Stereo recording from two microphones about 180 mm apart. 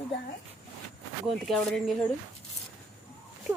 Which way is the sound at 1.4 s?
Centre (ahead or behind).